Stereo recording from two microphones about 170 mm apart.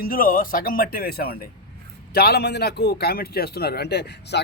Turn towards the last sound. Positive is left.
turn(degrees=80)